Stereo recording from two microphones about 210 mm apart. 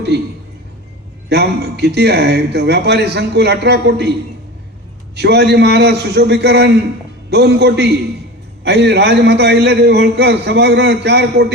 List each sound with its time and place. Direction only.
0.1 s a man's voice: 50° right (ahead or behind)
1.3 s a man's voice: 50° right (ahead or behind)
5.1 s a man's voice: 50° right (ahead or behind)